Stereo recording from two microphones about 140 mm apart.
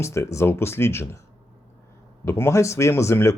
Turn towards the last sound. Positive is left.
turn(degrees=20)  # may be behind; listen again after turning